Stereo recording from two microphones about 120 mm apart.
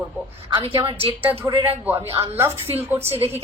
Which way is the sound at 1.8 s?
15° right (ahead or behind).